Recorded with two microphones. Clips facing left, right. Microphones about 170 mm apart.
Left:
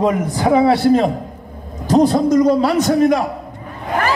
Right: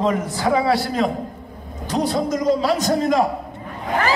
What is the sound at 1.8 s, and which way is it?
Speech, 40° left (ahead or behind).